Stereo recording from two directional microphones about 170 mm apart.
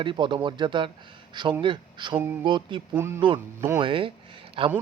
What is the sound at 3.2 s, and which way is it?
A man's voice, 25° right (ahead or behind).